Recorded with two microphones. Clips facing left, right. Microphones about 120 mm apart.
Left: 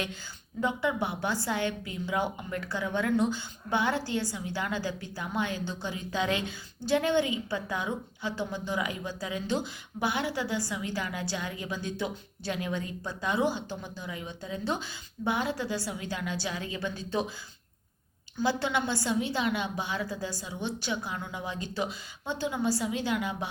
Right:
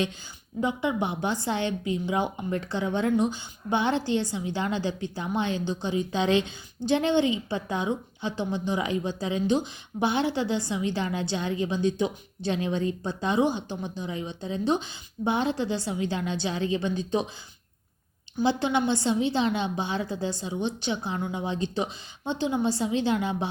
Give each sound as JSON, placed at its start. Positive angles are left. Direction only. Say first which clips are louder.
{"t": 0.6, "sound": "a woman's voice", "louder": "right 2 dB", "side_deg": -20}
{"t": 18.3, "sound": "a woman's voice", "louder": "right 4 dB", "side_deg": -20}